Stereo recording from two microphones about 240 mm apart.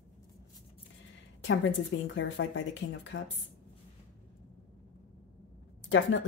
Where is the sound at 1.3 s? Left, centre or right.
Left.